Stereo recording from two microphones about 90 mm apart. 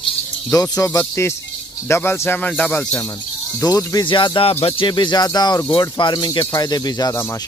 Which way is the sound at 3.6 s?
40° left (ahead or behind).